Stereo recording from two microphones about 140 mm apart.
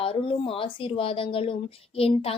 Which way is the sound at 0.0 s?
40° left (ahead or behind).